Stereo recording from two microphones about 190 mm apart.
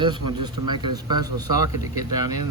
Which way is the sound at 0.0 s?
25° right (ahead or behind).